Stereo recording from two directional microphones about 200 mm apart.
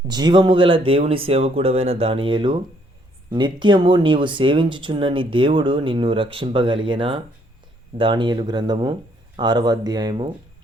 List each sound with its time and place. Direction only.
0.1 s speech: 20° right (ahead or behind)